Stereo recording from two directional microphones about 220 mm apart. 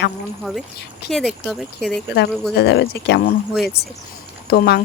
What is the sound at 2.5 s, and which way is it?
Speech, 50° left (ahead or behind).